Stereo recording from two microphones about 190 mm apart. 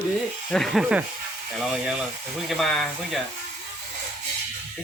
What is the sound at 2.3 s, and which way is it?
Speech, centre (ahead or behind).